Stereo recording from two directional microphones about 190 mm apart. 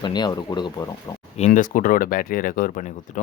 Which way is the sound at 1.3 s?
40° left (ahead or behind).